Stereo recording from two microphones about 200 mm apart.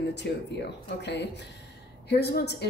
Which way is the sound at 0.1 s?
60° left (ahead or behind).